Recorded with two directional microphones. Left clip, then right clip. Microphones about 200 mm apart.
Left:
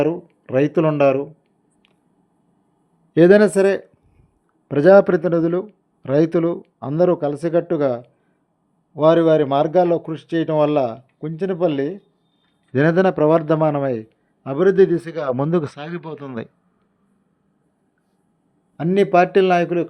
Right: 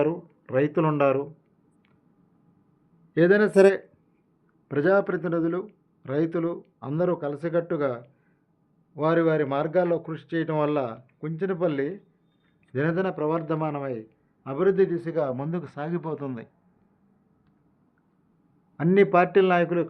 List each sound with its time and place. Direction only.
0.0 s speech: 35° left (ahead or behind)
3.2 s speech: 40° left (ahead or behind)
4.7 s speech: 40° left (ahead or behind)
12.7 s a man's voice: 50° left (ahead or behind)
18.8 s a man's voice: 20° left (ahead or behind)